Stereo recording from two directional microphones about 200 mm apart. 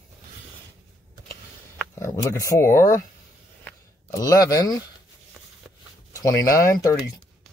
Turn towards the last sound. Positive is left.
turn(degrees=15)  # may be behind; listen again after turning